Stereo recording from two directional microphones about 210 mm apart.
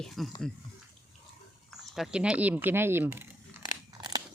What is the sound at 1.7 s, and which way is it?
Speech, centre (ahead or behind).